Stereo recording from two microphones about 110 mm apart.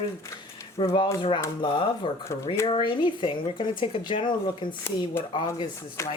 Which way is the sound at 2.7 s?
50° left (ahead or behind).